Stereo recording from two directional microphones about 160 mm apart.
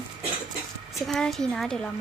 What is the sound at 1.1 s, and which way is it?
Speech, 5° left (ahead or behind).